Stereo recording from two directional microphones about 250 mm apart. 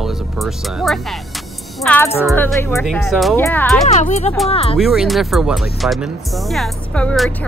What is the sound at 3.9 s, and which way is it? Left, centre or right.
Speech, left.